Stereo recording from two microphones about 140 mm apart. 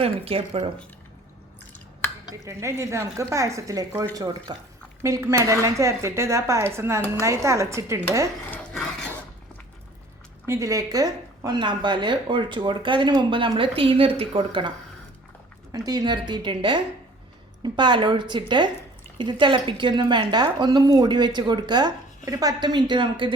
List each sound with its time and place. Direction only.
0.0 s speech: 45° right (ahead or behind)
2.3 s speech: 20° right (ahead or behind)
8.7 s a sound: 5° left (ahead or behind)
10.4 s speech: 20° right (ahead or behind); by 14.7 s 40° right (ahead or behind)
15.7 s speech: 25° right (ahead or behind)